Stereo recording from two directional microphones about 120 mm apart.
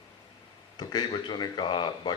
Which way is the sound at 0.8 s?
35° left (ahead or behind).